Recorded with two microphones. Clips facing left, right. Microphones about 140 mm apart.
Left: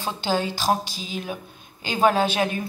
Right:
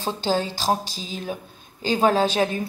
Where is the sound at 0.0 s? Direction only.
35° right (ahead or behind).